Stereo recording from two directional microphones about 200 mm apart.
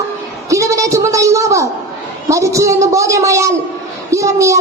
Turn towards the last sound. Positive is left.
turn(degrees=-15)  # may be behind; listen again after turning